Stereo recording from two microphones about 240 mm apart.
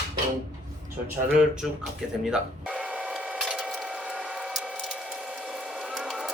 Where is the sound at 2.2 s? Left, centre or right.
Centre.